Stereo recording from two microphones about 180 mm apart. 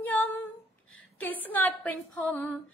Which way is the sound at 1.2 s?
10° left (ahead or behind).